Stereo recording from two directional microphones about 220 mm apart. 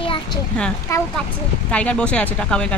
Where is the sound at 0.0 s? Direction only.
25° left (ahead or behind).